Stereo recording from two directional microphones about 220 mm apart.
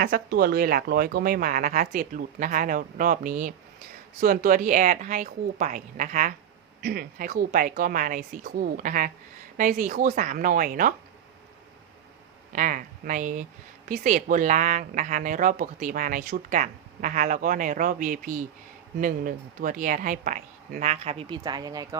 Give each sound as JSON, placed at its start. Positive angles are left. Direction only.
{"t": 0.0, "sound": "speech", "side_deg": -45}
{"t": 12.5, "sound": "speech", "side_deg": -35}